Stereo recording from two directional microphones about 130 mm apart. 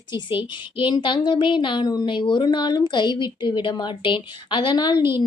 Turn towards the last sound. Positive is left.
turn(degrees=-20)  # may be behind; listen again after turning